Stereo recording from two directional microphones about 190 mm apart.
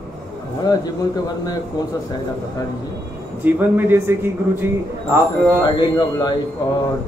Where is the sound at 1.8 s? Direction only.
20° left (ahead or behind).